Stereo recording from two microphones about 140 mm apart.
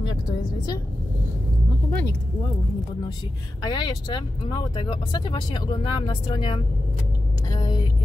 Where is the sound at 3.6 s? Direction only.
30° left (ahead or behind).